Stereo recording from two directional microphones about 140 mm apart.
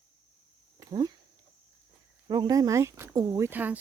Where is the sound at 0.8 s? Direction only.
30° right (ahead or behind).